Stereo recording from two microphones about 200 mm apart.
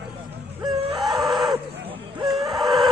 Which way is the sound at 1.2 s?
Centre (ahead or behind).